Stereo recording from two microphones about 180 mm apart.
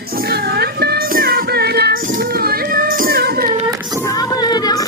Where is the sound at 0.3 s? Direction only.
60° right (ahead or behind).